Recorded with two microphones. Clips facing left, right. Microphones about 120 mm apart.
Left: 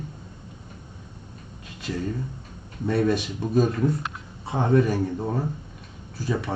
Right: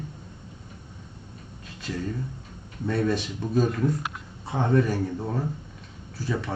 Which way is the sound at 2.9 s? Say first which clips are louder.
Left 3 dB; 15° left (ahead or behind).